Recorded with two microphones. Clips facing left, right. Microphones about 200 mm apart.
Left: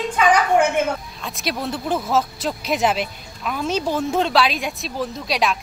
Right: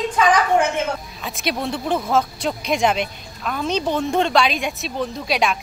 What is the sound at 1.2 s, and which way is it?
Speech, centre (ahead or behind).